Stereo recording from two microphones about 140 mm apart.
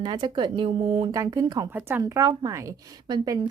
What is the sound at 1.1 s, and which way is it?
Speech, 25° right (ahead or behind).